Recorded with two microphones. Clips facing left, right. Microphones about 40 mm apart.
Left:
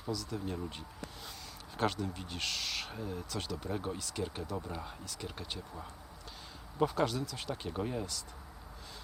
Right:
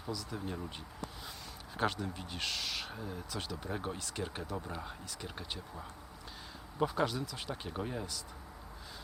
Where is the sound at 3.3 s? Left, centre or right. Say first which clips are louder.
Left 1 dB; centre.